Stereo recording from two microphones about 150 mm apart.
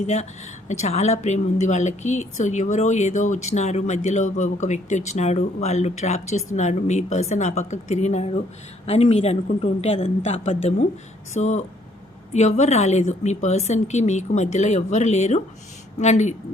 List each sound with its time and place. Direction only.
0.0 s a woman's voice: 50° left (ahead or behind)